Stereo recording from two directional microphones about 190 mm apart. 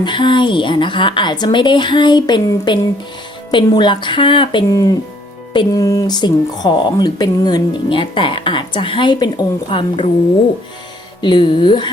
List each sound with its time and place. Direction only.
0.0 s speech: 25° left (ahead or behind)
11.2 s speech: 25° left (ahead or behind)